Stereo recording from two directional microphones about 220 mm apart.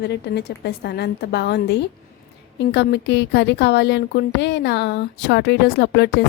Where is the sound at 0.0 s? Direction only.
50° left (ahead or behind).